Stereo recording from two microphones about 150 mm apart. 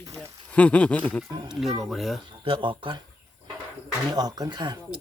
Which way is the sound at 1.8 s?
Centre (ahead or behind).